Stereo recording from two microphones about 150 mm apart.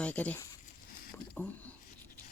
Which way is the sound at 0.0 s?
10° left (ahead or behind).